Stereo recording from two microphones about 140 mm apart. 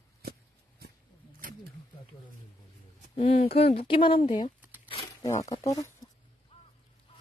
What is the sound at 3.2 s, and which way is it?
Speech, 50° left (ahead or behind).